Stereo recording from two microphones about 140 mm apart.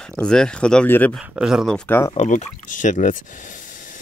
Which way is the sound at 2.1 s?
55° left (ahead or behind).